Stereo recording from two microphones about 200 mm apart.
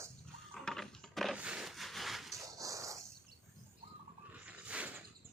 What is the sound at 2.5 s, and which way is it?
Dog, 15° right (ahead or behind).